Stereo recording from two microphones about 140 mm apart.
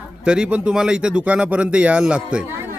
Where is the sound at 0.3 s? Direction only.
5° right (ahead or behind).